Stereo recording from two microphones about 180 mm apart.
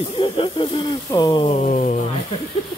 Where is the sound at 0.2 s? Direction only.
30° left (ahead or behind).